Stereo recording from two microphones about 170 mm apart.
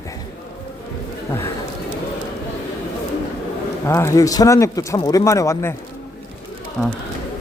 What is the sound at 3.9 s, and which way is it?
Speech, 15° left (ahead or behind).